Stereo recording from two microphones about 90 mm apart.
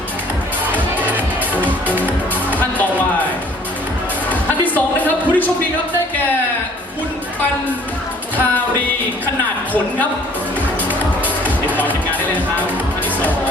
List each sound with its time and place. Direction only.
2.5 s music: 20° left (ahead or behind)
4.3 s music: 20° left (ahead or behind)